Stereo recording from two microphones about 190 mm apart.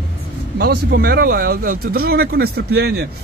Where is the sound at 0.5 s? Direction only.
55° right (ahead or behind).